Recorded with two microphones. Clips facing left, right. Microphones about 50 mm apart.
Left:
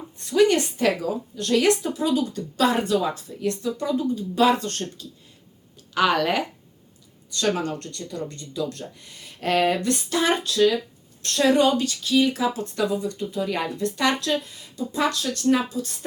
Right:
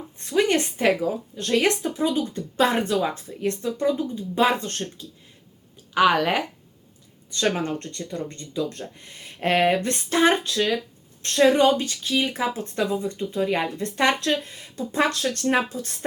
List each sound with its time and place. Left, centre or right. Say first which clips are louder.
0.3 s speech: left 3 dB; right
7.3 s speech: even; right